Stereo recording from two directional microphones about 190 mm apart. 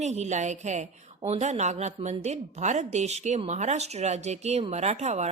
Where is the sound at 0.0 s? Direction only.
35° right (ahead or behind).